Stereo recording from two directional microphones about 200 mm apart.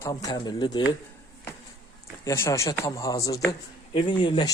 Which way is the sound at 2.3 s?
15° left (ahead or behind).